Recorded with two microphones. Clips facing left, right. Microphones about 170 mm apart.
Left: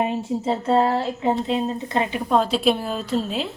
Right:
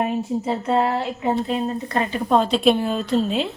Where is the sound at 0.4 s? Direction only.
30° left (ahead or behind).